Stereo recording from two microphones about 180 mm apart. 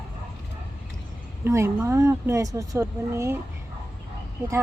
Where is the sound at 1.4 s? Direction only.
15° right (ahead or behind).